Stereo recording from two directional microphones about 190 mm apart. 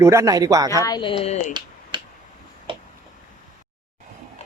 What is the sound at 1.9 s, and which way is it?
Tick-tock, 25° right (ahead or behind).